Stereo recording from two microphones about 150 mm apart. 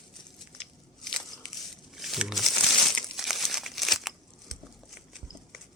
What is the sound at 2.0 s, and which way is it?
Crumpling, centre (ahead or behind).